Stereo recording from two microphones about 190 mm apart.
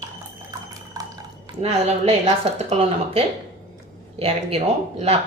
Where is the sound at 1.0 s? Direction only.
20° right (ahead or behind).